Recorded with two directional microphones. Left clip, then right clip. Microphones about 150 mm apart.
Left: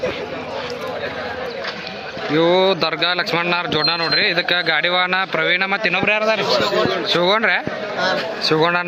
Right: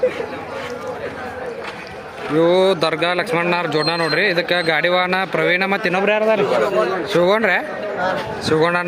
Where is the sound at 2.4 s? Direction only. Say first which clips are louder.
Right 1 dB; 10° right (ahead or behind).